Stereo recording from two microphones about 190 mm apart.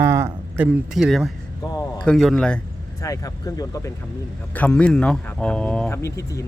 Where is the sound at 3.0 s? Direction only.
15° left (ahead or behind).